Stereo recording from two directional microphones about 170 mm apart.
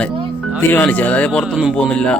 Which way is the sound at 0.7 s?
10° left (ahead or behind).